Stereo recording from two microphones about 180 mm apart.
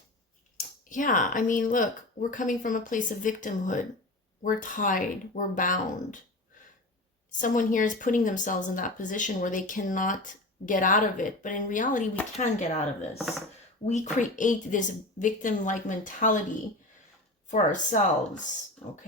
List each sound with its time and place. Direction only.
0.9 s speech: 45° left (ahead or behind)
7.3 s speech: 45° left (ahead or behind)